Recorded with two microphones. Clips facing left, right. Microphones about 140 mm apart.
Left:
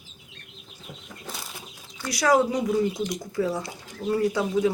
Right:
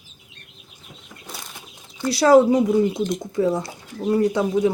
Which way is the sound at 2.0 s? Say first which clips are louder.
Right 7 dB; 30° right (ahead or behind).